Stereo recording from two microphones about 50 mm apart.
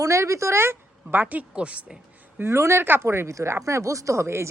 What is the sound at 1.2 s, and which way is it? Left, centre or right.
Speech, right.